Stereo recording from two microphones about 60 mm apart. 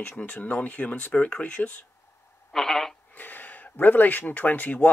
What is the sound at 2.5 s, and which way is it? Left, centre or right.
Radio, centre.